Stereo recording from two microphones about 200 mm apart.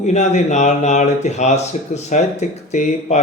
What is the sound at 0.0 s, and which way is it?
Speech, 35° left (ahead or behind).